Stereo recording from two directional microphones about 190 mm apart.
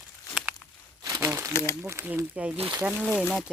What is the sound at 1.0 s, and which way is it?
Crumpling, 20° right (ahead or behind).